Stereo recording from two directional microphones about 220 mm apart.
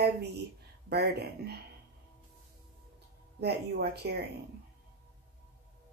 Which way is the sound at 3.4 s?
50° right (ahead or behind).